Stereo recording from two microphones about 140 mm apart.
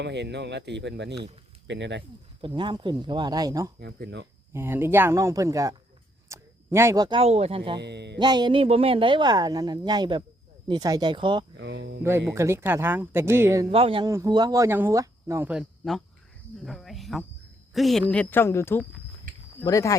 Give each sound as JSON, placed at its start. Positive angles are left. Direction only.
{"t": 2.6, "sound": "speech", "side_deg": -35}
{"t": 6.2, "sound": "a sound", "side_deg": -20}
{"t": 7.2, "sound": "speech", "side_deg": -50}
{"t": 12.0, "sound": "speech", "side_deg": -20}
{"t": 13.7, "sound": "speech", "side_deg": -40}
{"t": 14.0, "sound": "speech", "side_deg": -25}
{"t": 15.8, "sound": "speech", "side_deg": 0}
{"t": 18.1, "sound": "speech", "side_deg": 10}